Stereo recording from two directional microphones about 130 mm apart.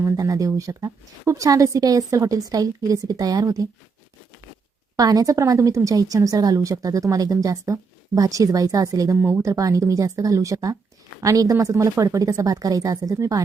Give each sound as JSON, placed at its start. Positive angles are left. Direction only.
{"t": 0.0, "sound": "a woman's voice", "side_deg": -25}
{"t": 4.9, "sound": "a woman's voice", "side_deg": -30}